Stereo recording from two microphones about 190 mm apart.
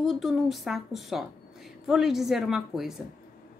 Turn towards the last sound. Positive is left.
turn(degrees=0)  # may be behind; listen again after turning